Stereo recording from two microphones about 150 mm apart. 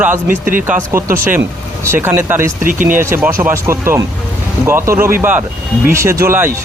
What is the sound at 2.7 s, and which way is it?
Speech, 65° right (ahead or behind).